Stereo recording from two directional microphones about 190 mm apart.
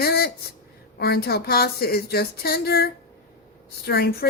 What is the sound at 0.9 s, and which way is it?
A woman's voice, 55° left (ahead or behind).